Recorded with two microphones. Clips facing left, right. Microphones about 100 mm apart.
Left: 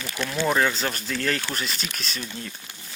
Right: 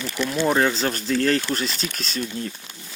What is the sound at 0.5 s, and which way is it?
Speech, 30° right (ahead or behind).